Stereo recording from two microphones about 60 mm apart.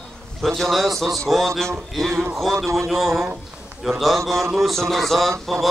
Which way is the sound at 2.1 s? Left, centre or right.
Right.